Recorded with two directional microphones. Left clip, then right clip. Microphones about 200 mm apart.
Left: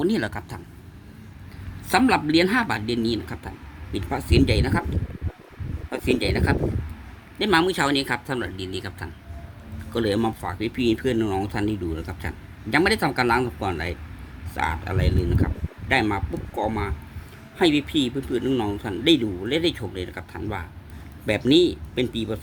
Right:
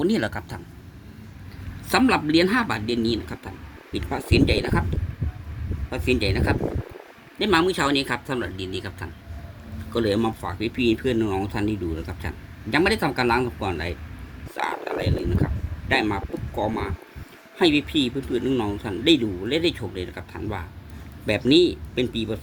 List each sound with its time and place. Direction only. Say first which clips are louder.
0.0 s speech: right 1 dB; centre (ahead or behind)
1.9 s speech: even; 15° left (ahead or behind)
5.9 s speech: even; 15° left (ahead or behind)